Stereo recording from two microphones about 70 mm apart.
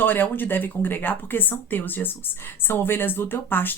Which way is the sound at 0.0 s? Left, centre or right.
Left.